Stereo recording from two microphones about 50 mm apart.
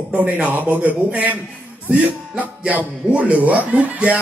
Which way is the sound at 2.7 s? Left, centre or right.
Right.